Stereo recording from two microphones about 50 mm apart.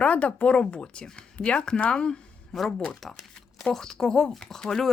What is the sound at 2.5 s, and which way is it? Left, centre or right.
A woman's voice, centre.